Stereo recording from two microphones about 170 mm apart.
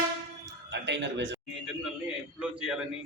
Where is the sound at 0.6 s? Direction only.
90° right.